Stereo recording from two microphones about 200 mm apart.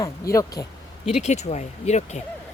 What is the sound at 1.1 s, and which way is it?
Speech, 35° left (ahead or behind).